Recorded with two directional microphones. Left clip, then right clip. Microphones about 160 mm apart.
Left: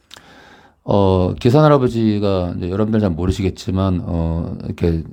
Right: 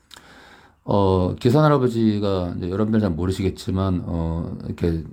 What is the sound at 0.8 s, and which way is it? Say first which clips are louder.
Speech: left 4 dB; 30° left (ahead or behind).